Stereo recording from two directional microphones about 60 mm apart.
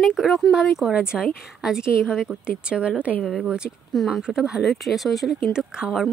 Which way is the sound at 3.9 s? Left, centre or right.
Centre.